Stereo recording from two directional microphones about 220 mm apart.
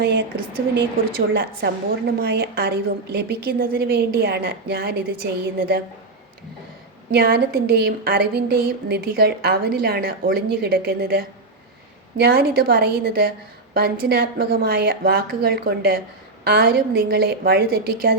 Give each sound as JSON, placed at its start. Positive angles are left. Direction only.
{"t": 0.0, "sound": "a woman's voice", "side_deg": -45}
{"t": 7.1, "sound": "a woman's voice", "side_deg": -45}